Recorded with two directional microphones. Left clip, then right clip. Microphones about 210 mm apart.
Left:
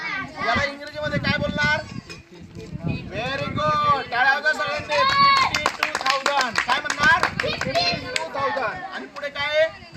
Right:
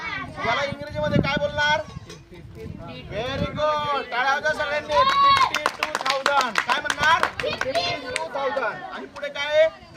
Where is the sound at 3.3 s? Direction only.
30° right (ahead or behind).